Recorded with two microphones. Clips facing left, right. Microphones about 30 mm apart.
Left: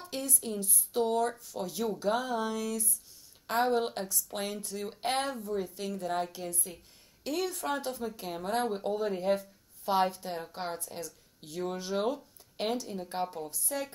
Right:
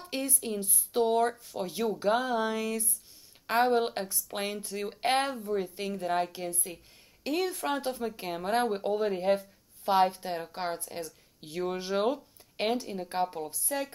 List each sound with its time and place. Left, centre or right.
0.0 s a woman's voice: centre